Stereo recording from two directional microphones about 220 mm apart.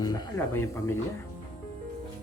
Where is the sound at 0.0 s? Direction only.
20° left (ahead or behind).